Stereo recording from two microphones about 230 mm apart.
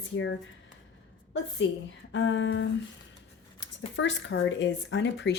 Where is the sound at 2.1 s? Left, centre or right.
Left.